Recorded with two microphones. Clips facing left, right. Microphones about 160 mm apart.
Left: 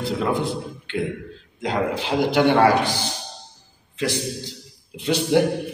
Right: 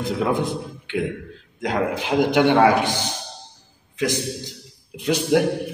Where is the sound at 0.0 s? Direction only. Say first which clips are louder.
Right 1 dB; 20° right (ahead or behind).